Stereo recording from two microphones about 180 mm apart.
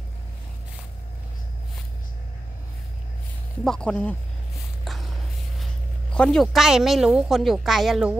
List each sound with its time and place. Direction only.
3.6 s speech: 5° left (ahead or behind)
4.8 s a sound: centre (ahead or behind)
6.1 s speech: 5° left (ahead or behind)